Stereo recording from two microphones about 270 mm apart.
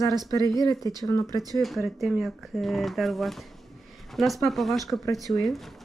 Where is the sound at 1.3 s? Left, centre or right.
Centre.